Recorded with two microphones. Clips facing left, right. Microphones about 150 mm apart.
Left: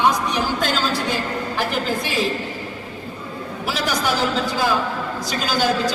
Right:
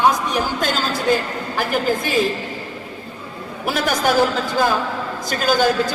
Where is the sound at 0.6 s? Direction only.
50° right (ahead or behind).